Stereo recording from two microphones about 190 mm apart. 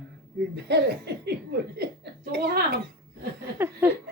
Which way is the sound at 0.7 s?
60° right (ahead or behind).